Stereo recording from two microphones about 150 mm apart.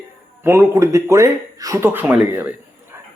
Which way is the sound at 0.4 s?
15° right (ahead or behind).